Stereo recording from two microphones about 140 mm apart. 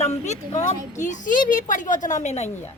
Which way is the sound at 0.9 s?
60° left (ahead or behind).